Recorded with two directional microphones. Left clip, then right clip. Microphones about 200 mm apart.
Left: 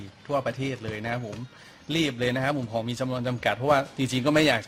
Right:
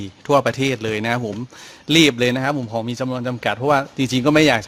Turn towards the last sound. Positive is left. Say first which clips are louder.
# right 7 dB
turn(degrees=-30)  # may be behind; listen again after turning